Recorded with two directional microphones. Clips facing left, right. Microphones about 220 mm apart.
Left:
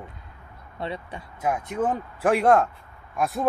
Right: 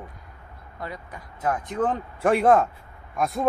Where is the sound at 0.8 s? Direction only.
30° left (ahead or behind).